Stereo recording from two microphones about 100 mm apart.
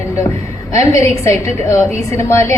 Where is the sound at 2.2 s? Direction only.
30° left (ahead or behind).